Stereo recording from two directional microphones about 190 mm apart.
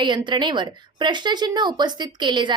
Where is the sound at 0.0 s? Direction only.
25° right (ahead or behind).